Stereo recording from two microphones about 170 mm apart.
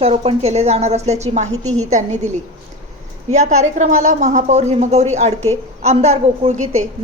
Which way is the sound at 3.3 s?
45° right (ahead or behind).